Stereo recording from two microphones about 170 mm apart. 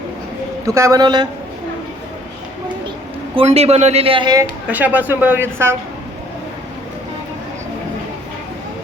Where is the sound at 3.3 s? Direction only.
35° right (ahead or behind).